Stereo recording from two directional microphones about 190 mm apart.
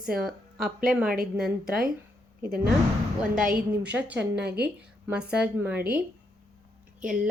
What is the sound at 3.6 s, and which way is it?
Speech, 10° right (ahead or behind).